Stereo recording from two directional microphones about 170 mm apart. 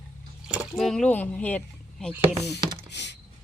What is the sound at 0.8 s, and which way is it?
Speech, 5° left (ahead or behind).